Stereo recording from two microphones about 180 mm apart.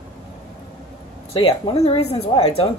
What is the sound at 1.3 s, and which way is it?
Speech, 30° left (ahead or behind).